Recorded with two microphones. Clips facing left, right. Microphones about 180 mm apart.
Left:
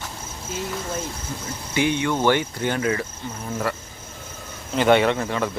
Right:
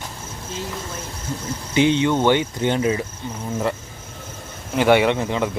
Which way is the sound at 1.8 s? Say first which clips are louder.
Right 4 dB; 20° right (ahead or behind).